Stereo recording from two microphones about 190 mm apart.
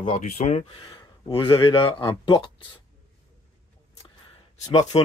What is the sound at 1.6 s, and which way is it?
Speech, 25° left (ahead or behind).